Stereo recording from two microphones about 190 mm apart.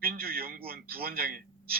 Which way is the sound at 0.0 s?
50° right (ahead or behind).